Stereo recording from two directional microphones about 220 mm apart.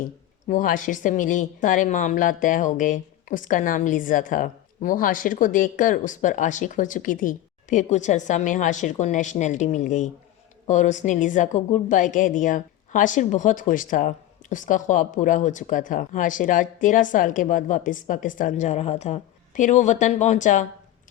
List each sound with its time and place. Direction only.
0.0 s speech: 35° left (ahead or behind)